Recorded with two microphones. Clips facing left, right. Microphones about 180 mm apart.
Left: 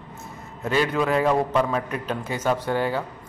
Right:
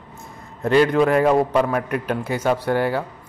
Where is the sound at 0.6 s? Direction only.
50° right (ahead or behind).